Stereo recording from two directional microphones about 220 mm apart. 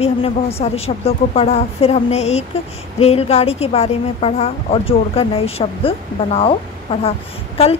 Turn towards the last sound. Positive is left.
turn(degrees=25)  # may be behind; listen again after turning